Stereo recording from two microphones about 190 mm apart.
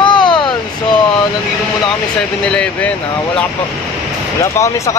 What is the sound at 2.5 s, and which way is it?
Speech, 5° left (ahead or behind).